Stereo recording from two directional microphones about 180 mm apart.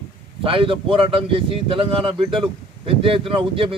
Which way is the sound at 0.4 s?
30° right (ahead or behind).